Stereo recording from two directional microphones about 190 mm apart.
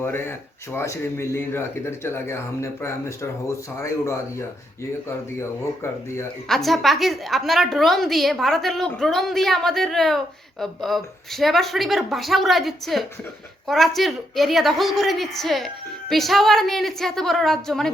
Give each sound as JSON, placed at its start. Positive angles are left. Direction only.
{"t": 0.0, "sound": "speech", "side_deg": 10}
{"t": 6.5, "sound": "a woman's voice", "side_deg": 0}